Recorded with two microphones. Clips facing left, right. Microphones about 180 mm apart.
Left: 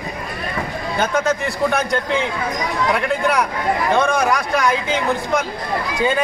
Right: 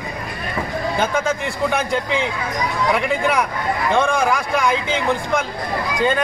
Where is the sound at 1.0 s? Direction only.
Centre (ahead or behind).